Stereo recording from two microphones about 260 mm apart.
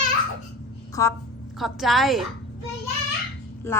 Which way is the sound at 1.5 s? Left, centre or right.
Centre.